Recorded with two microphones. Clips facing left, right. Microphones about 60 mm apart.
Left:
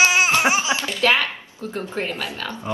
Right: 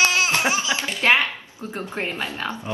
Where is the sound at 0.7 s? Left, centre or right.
Right.